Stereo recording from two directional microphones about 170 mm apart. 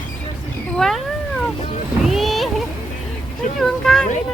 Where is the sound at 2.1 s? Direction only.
Centre (ahead or behind).